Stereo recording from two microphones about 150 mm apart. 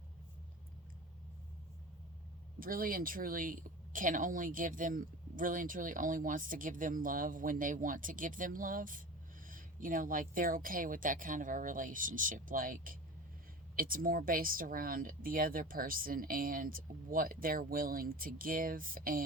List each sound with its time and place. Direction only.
2.6 s a woman's voice: 70° right (ahead or behind)